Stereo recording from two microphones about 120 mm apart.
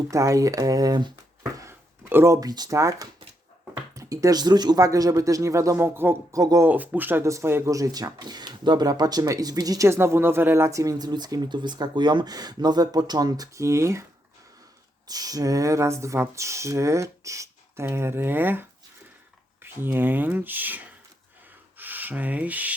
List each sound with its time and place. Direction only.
0.1 s speech: 25° right (ahead or behind)
1.5 s speech: 20° right (ahead or behind)
6.4 s speech: 30° right (ahead or behind)
6.7 s speech: 15° right (ahead or behind)
15.0 s speech: 30° right (ahead or behind)
19.6 s speech: 15° right (ahead or behind)
21.8 s rub: 15° right (ahead or behind)